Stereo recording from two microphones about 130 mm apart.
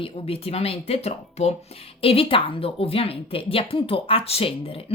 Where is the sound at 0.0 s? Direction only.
50° left (ahead or behind).